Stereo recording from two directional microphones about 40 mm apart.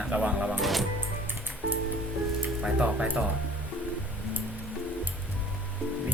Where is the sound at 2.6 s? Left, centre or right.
Right.